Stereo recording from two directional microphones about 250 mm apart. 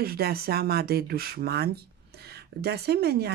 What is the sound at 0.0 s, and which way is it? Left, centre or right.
Speech, right.